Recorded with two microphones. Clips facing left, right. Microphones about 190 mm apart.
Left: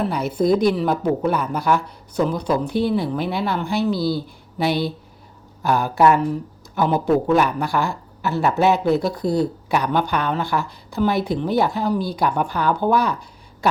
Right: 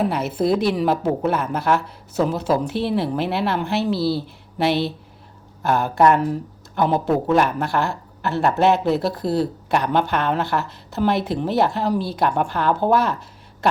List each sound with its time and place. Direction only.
0.0 s speech: 5° right (ahead or behind)
3.9 s speech: 30° right (ahead or behind)
4.5 s speech: centre (ahead or behind)